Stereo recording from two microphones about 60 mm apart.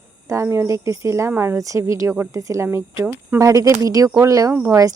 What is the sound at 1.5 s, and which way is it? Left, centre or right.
A woman's voice, right.